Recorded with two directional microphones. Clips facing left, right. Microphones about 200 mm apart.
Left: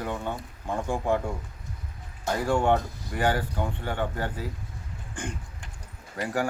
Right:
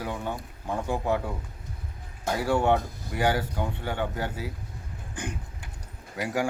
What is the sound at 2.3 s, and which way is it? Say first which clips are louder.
Speech: even; 10° right (ahead or behind).